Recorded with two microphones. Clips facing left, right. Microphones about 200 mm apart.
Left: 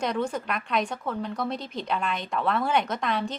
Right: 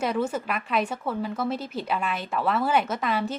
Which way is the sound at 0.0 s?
5° right (ahead or behind).